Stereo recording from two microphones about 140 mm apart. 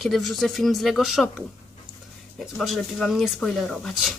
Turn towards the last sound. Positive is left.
turn(degrees=0)  # may be behind; listen again after turning